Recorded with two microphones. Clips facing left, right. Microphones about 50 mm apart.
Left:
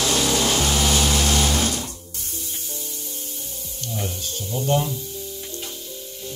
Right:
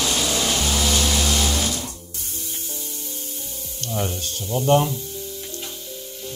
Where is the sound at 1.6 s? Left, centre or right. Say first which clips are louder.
Left 2 dB; left.